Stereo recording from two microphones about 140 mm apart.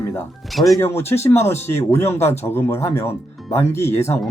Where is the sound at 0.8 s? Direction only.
20° left (ahead or behind).